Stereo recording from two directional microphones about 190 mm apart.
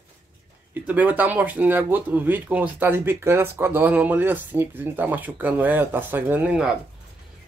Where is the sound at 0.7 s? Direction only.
10° right (ahead or behind).